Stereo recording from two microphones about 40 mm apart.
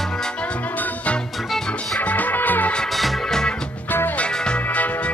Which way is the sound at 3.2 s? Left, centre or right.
Centre.